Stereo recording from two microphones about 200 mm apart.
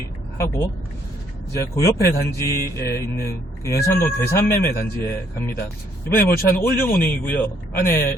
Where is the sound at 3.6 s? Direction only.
15° left (ahead or behind).